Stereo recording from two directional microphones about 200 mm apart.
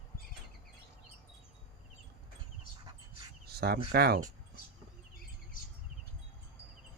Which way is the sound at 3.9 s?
50° right (ahead or behind).